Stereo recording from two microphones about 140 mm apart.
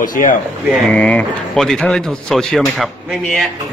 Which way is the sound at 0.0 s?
75° left (ahead or behind).